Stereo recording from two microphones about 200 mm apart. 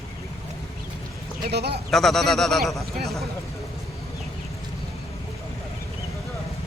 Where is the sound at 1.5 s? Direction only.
55° right (ahead or behind).